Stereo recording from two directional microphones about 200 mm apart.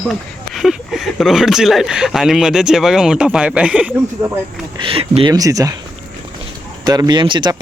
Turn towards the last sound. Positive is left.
turn(degrees=-20)  # may be behind; listen again after turning